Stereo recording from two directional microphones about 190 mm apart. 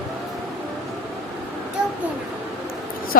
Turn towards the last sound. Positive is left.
turn(degrees=45)  # may be behind; listen again after turning